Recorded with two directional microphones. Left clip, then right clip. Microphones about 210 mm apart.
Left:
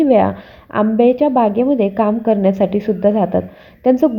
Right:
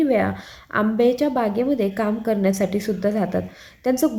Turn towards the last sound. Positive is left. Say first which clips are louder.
# left 7 dB
turn(degrees=10)  # may be behind; listen again after turning